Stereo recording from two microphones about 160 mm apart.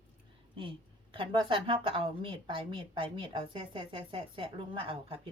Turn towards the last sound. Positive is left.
turn(degrees=-35)  # may be behind; listen again after turning